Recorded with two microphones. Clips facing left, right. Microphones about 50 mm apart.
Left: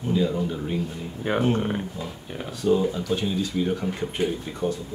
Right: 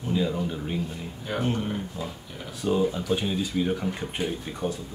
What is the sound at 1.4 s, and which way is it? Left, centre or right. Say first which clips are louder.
Speech: left 2 dB; left.